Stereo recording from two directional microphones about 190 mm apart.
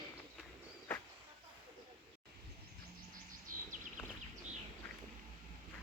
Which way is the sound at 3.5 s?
45° right (ahead or behind).